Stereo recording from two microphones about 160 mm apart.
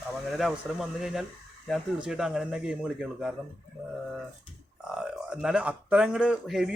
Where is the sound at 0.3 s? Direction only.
Centre (ahead or behind).